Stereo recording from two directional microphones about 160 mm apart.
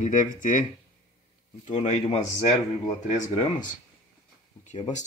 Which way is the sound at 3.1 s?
50° left (ahead or behind).